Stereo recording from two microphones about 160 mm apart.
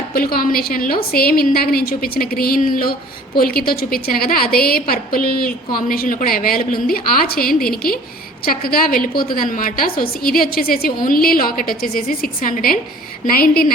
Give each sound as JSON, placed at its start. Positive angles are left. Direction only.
{"t": 0.1, "sound": "a woman's voice", "side_deg": 70}